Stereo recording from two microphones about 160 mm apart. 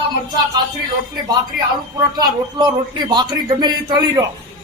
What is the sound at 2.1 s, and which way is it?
Speech, 25° right (ahead or behind).